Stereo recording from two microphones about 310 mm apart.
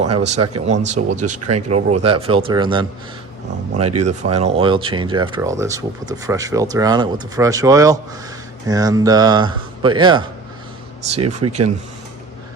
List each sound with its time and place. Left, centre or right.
0.2 s speech: right